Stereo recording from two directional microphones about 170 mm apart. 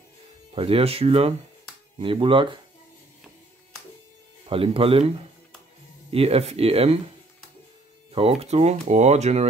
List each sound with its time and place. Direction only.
0.6 s speech: 35° right (ahead or behind)
4.5 s speech: 35° right (ahead or behind)
8.1 s speech: 35° right (ahead or behind)